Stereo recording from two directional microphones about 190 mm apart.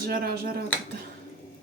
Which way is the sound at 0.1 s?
50° right (ahead or behind).